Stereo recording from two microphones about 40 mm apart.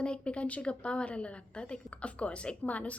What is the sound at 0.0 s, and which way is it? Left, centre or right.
A woman's voice, left.